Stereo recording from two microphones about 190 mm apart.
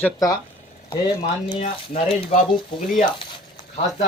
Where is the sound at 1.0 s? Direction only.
25° left (ahead or behind).